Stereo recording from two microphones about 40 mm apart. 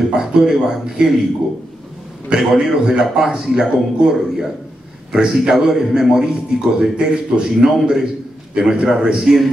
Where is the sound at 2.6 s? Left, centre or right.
Centre.